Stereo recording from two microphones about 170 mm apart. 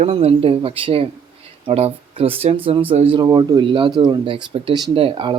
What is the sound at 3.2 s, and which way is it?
Speech, 20° right (ahead or behind).